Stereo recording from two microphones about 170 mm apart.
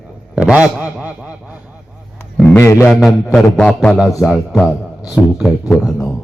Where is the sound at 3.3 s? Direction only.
5° left (ahead or behind).